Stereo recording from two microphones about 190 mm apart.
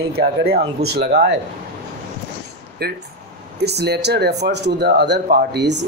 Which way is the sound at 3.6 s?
60° right (ahead or behind).